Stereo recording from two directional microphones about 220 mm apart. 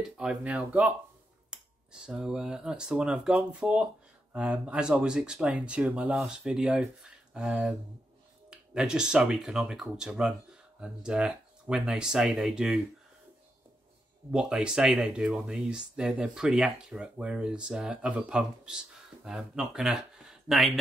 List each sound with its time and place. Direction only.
0.2 s speech: 5° right (ahead or behind)
14.3 s speech: 5° right (ahead or behind)